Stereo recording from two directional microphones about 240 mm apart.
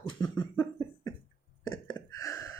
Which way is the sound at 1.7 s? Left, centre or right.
Centre.